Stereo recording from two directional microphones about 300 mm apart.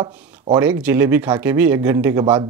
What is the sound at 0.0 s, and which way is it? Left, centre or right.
Speech, centre.